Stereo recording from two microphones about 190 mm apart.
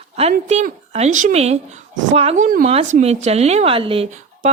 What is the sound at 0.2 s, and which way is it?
A woman's voice, 35° right (ahead or behind).